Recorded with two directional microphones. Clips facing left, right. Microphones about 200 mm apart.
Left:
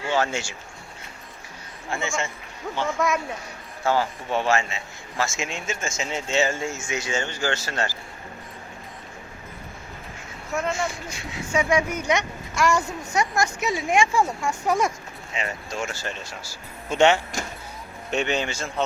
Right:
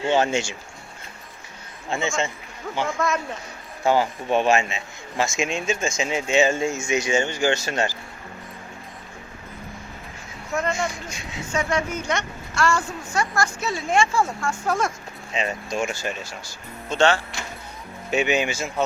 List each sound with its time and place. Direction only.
0.0 s speech: 20° right (ahead or behind)
1.9 s a man's voice: 20° right (ahead or behind)
3.0 s a woman's voice: 15° left (ahead or behind)
3.8 s a man's voice: 15° right (ahead or behind)
10.5 s speech: 5° left (ahead or behind)
10.8 s a man's voice: 20° right (ahead or behind)
11.5 s a woman's voice: 10° left (ahead or behind)
15.3 s a man's voice: 20° right (ahead or behind)
16.9 s a woman's voice: 15° left (ahead or behind)
18.1 s a man's voice: 5° right (ahead or behind)